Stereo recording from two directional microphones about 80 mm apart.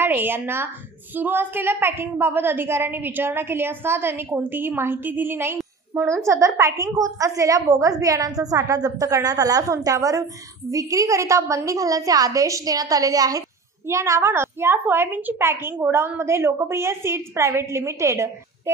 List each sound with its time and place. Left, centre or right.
0.0 s a woman's voice: right
13.8 s a woman's voice: right